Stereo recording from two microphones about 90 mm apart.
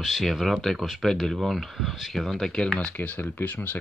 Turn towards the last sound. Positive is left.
turn(degrees=15)  # may be behind; listen again after turning